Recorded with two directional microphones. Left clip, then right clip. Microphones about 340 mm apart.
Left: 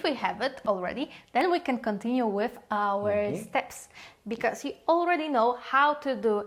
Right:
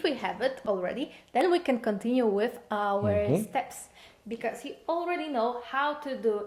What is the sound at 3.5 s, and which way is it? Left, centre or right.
Speech, left.